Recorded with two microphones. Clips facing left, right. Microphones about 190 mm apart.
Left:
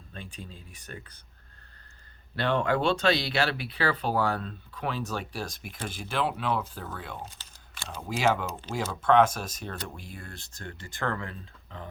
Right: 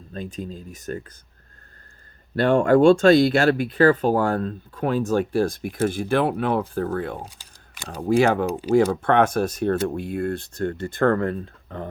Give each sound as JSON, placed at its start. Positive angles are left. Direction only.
{"t": 0.1, "sound": "speech", "side_deg": -40}
{"t": 2.3, "sound": "speech", "side_deg": -50}